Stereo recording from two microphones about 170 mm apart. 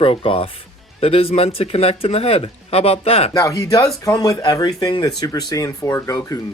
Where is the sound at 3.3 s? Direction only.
20° left (ahead or behind).